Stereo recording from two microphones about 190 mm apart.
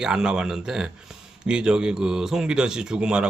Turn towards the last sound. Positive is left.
turn(degrees=-5)  # may be behind; listen again after turning